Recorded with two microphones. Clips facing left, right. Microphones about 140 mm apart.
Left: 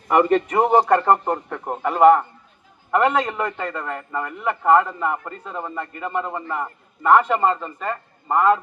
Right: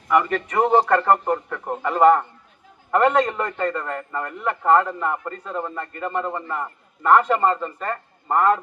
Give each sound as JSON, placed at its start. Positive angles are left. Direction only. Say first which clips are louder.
{"t": 0.1, "sound": "a man's voice", "louder": "left 3 dB", "side_deg": 30}